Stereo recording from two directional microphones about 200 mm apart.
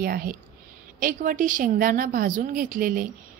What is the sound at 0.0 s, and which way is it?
A woman's voice, 45° right (ahead or behind).